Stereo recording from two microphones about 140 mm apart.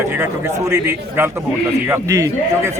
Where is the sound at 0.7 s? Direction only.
15° right (ahead or behind).